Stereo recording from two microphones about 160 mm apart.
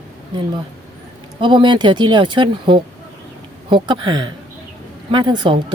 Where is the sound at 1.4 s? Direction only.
30° right (ahead or behind).